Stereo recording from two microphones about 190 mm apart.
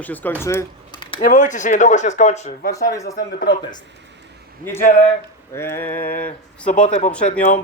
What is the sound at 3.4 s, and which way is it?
Speech, 20° left (ahead or behind).